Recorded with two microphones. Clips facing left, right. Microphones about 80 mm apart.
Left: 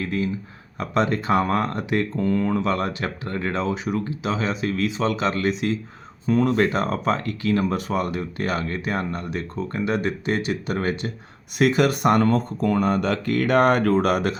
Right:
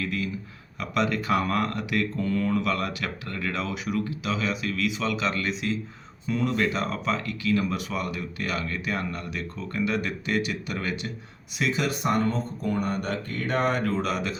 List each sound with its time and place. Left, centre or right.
0.0 s speech: left
11.5 s speech: left